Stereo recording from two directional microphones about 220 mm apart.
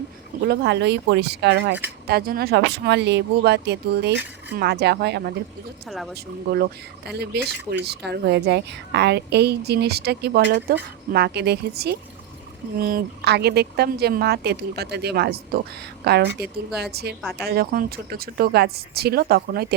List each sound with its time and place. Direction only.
0.4 s speech: 50° right (ahead or behind)
5.9 s speech: centre (ahead or behind)
6.1 s speech: 45° right (ahead or behind)